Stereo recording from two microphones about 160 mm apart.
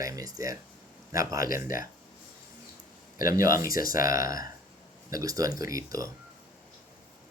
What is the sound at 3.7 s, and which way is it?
Speech, 60° left (ahead or behind).